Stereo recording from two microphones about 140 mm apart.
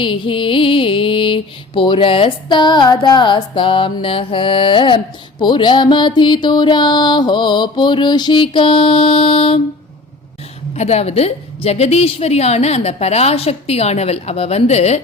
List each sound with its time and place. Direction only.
0.0 s music: 35° left (ahead or behind)
10.8 s a woman's voice: 50° left (ahead or behind)